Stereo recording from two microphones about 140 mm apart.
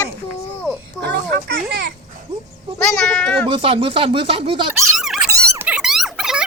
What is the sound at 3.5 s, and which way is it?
Speech, 40° right (ahead or behind).